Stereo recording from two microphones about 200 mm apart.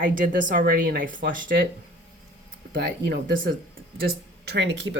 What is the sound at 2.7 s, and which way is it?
Speech, 50° right (ahead or behind).